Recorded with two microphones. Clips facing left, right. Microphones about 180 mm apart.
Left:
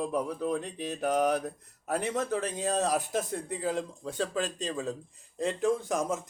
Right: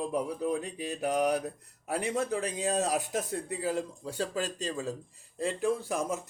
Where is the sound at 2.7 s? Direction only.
40° left (ahead or behind).